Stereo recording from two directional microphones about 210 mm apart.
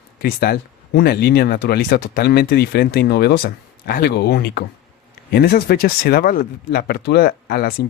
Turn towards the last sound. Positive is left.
turn(degrees=45)  # may be behind; listen again after turning